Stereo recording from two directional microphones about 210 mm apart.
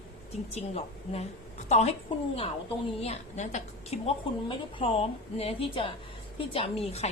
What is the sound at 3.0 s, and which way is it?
A woman's voice, 30° left (ahead or behind).